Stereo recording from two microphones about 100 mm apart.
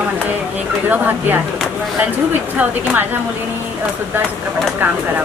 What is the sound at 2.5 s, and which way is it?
Speech, 15° right (ahead or behind).